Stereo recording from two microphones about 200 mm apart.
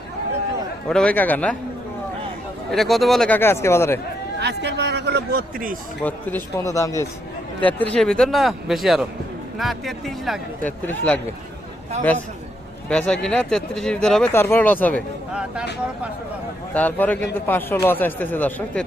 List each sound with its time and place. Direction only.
0.9 s speech: 5° left (ahead or behind)
2.7 s speech: centre (ahead or behind)
4.4 s a sound: 60° right (ahead or behind)
6.0 s speech: 10° left (ahead or behind)
12.9 s speech: 5° left (ahead or behind)
16.7 s speech: 10° left (ahead or behind)